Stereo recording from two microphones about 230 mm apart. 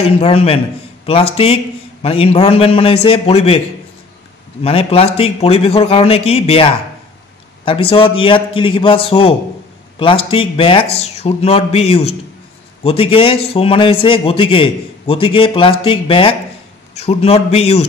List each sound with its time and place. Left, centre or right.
0.0 s a man's voice: left
4.6 s a man's voice: left